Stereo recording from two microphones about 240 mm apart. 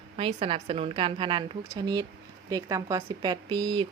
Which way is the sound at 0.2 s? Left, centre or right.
Right.